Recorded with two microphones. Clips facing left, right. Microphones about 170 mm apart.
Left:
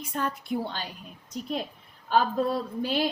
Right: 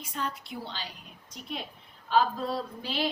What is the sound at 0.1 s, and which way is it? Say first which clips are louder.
Speech: left 6 dB; 50° left (ahead or behind).